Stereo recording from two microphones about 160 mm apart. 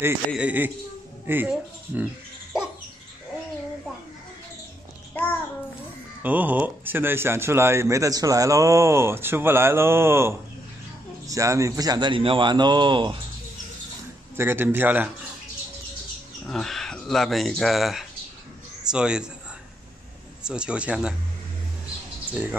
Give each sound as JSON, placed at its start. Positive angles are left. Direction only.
{"t": 0.3, "sound": "a man's voice", "side_deg": -10}
{"t": 6.2, "sound": "a man's voice", "side_deg": -10}
{"t": 14.3, "sound": "a man's voice", "side_deg": -15}
{"t": 16.4, "sound": "speech", "side_deg": 0}
{"t": 20.4, "sound": "speech", "side_deg": -5}
{"t": 22.3, "sound": "speech", "side_deg": -10}